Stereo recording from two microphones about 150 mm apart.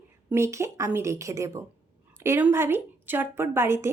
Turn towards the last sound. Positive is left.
turn(degrees=-15)  # may be behind; listen again after turning